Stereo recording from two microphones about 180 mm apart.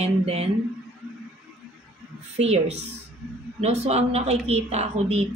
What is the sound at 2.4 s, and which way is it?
A woman's voice, 35° right (ahead or behind).